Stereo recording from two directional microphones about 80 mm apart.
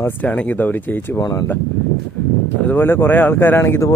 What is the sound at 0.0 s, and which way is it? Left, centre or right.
Speech, centre.